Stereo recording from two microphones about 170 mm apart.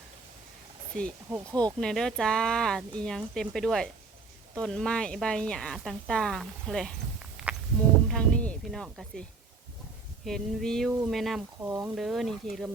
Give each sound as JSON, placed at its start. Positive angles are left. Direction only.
{"t": 0.9, "sound": "speech", "side_deg": 5}
{"t": 7.2, "sound": "walk", "side_deg": -5}
{"t": 8.0, "sound": "speech", "side_deg": 5}
{"t": 10.2, "sound": "speech", "side_deg": 5}
{"t": 11.6, "sound": "speech", "side_deg": -20}
{"t": 11.9, "sound": "speech", "side_deg": 0}